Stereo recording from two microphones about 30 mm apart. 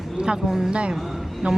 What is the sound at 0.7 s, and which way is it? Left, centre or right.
Speech, right.